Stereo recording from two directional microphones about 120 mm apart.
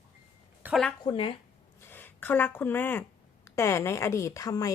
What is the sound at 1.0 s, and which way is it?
Speech, 45° left (ahead or behind).